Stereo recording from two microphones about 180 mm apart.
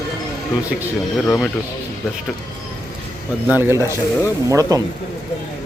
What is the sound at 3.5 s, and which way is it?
Speech, 15° right (ahead or behind).